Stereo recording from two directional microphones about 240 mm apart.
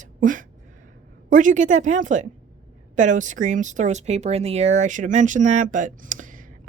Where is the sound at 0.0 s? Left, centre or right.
Right.